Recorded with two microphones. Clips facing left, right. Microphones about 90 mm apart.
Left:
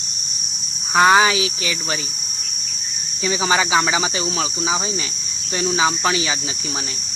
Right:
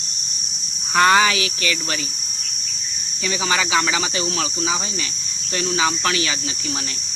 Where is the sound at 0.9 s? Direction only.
15° left (ahead or behind).